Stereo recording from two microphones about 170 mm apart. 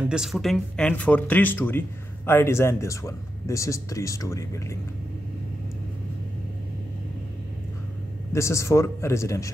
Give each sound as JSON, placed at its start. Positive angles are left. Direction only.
{"t": 0.0, "sound": "speech", "side_deg": -5}
{"t": 8.3, "sound": "speech", "side_deg": 15}